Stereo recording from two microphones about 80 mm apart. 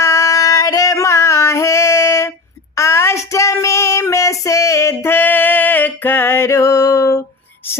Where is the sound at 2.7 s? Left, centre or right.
Left.